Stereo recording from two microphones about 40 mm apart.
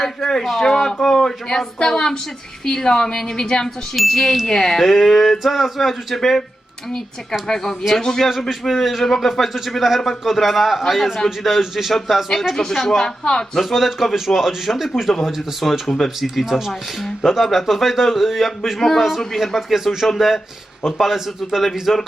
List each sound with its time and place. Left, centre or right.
0.2 s speech: centre
3.9 s speech: centre
4.8 s speech: centre
7.4 s speech: centre
8.6 s speech: centre
13.2 s speech: centre
13.7 s speech: centre
15.6 s speech: centre
16.0 s speech: centre